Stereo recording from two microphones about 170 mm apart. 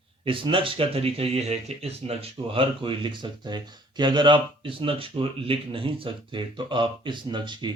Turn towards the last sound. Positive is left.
turn(degrees=-25)  # may be behind; listen again after turning